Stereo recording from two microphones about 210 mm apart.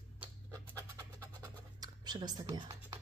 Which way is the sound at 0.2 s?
10° right (ahead or behind).